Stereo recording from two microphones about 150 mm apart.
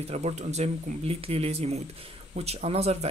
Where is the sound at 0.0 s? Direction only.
45° right (ahead or behind).